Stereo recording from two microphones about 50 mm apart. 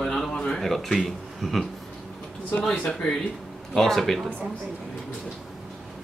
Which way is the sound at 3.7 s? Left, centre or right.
Centre.